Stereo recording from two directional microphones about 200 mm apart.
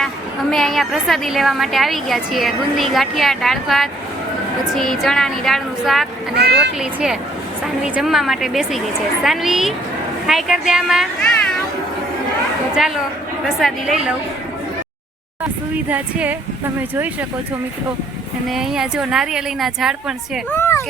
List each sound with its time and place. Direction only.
0.5 s a woman's voice: centre (ahead or behind)
6.3 s speech: 55° right (ahead or behind)
6.7 s a woman's voice: centre (ahead or behind)
13.6 s a woman's voice: centre (ahead or behind)
15.9 s speech: 5° right (ahead or behind)
18.4 s a woman's voice: centre (ahead or behind)
20.5 s a sound: 10° left (ahead or behind)